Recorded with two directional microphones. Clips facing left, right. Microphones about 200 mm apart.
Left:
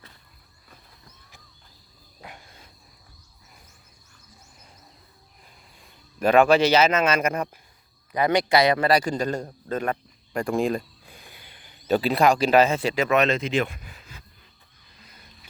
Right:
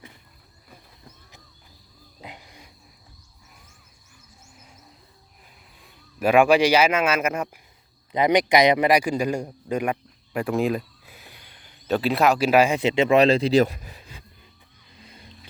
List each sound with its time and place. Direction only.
2.2 s a sound: 20° right (ahead or behind)
5.8 s a man's voice: 5° right (ahead or behind)
8.1 s a man's voice: 20° right (ahead or behind)
15.0 s music: 30° right (ahead or behind)